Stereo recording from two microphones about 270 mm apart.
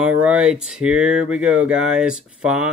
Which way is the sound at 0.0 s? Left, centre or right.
Centre.